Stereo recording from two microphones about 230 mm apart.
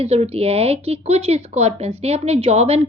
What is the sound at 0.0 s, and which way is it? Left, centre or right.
A woman's voice, right.